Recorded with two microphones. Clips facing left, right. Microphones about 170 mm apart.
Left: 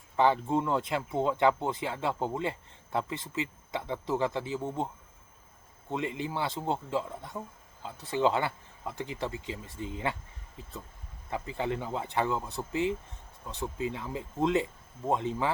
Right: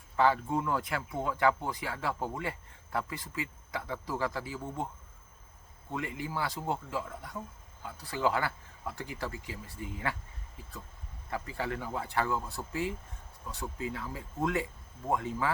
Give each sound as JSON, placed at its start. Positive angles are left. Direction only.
{"t": 0.2, "sound": "speech", "side_deg": 20}
{"t": 5.9, "sound": "speech", "side_deg": 20}
{"t": 11.3, "sound": "speech", "side_deg": 20}